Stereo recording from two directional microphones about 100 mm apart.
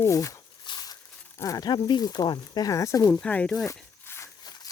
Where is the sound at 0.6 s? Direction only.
45° left (ahead or behind).